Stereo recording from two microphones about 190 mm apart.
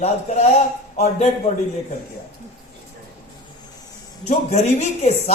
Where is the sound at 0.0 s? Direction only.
35° left (ahead or behind).